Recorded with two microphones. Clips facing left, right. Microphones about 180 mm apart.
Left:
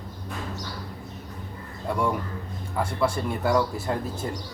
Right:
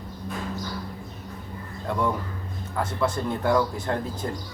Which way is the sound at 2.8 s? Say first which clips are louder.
Even; 10° left (ahead or behind).